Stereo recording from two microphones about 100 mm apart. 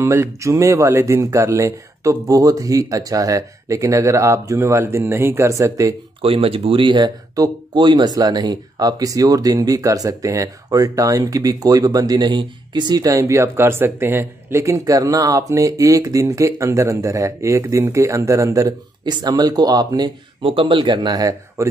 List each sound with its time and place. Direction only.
0.0 s speech: 30° right (ahead or behind)
6.2 s speech: 70° right (ahead or behind); by 7.1 s 55° right (ahead or behind)
7.3 s speech: 35° right (ahead or behind)
20.4 s speech: 60° right (ahead or behind); by 21.6 s 35° right (ahead or behind)